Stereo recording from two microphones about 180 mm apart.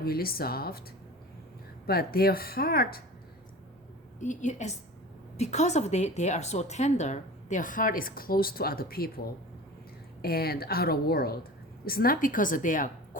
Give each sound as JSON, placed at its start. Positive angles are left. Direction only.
{"t": 0.0, "sound": "a woman's voice", "side_deg": 55}
{"t": 1.9, "sound": "a woman's voice", "side_deg": 55}
{"t": 4.2, "sound": "a woman's voice", "side_deg": 40}